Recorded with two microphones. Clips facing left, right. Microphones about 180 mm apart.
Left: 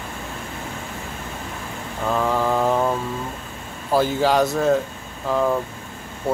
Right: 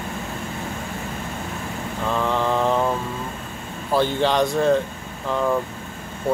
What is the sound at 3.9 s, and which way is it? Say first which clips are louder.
Speech: left 1 dB; 5° left (ahead or behind).